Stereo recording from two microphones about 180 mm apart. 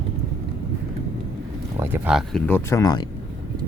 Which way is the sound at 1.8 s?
10° right (ahead or behind).